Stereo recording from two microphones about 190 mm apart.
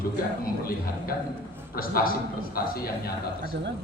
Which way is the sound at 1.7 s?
50° left (ahead or behind).